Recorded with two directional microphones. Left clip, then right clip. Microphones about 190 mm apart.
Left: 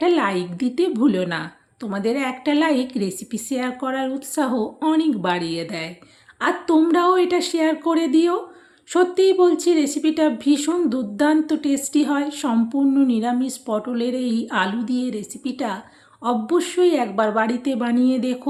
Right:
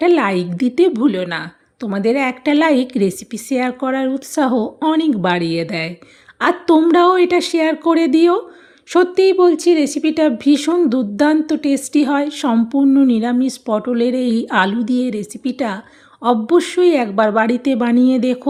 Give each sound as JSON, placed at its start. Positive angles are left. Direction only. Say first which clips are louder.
{"t": 0.0, "sound": "speech", "louder": "right 5 dB", "side_deg": -40}